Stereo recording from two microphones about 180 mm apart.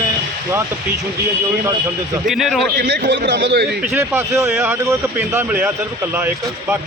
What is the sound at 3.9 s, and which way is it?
Speech, 15° right (ahead or behind).